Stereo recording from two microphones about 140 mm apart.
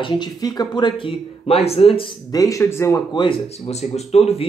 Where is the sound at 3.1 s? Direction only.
35° left (ahead or behind).